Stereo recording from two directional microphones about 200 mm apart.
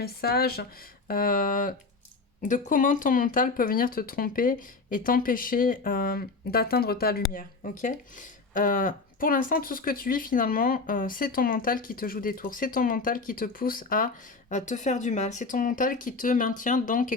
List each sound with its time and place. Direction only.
0.0 s speech: 50° left (ahead or behind)